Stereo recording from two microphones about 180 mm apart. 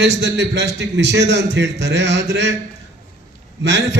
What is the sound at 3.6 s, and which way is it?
Speech, 75° right (ahead or behind).